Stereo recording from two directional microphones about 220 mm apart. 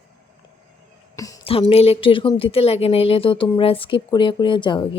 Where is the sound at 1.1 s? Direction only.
15° left (ahead or behind).